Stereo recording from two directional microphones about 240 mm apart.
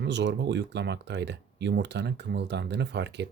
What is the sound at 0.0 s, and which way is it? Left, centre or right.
Speech, right.